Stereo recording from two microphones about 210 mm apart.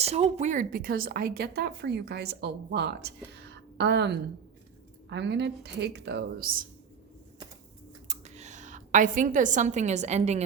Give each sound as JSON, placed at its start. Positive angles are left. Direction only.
{"t": 0.0, "sound": "a woman's voice", "side_deg": -30}
{"t": 3.3, "sound": "a sound", "side_deg": -55}
{"t": 5.0, "sound": "a woman's voice", "side_deg": -55}
{"t": 8.0, "sound": "a woman's voice", "side_deg": -35}